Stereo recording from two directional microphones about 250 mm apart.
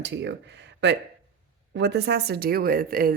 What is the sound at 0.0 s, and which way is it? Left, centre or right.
A woman's voice, right.